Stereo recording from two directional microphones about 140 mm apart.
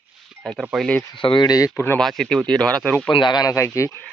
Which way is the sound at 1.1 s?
35° left (ahead or behind).